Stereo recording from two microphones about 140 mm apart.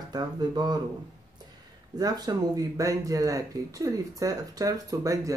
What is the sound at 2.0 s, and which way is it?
Speech, 30° right (ahead or behind).